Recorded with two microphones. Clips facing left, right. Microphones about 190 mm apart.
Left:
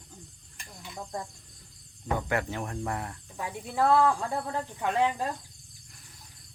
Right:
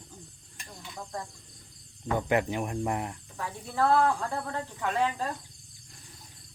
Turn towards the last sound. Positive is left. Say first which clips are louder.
# left 2 dB
turn(degrees=15)  # may be behind; listen again after turning